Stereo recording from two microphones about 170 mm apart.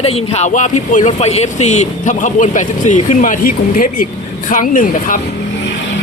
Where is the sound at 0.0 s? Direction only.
35° left (ahead or behind).